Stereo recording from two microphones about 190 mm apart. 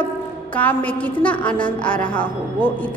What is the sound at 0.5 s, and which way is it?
A woman's voice, 10° left (ahead or behind).